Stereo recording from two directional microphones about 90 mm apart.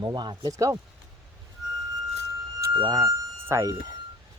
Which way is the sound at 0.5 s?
40° right (ahead or behind).